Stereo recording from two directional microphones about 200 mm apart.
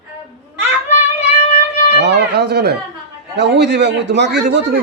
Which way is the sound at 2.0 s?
55° right (ahead or behind).